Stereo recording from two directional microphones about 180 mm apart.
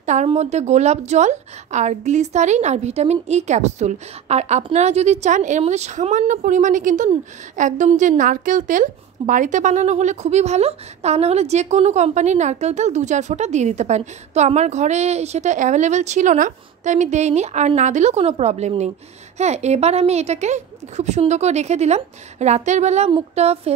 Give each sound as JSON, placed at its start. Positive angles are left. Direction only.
{"t": 0.0, "sound": "a woman's voice", "side_deg": -40}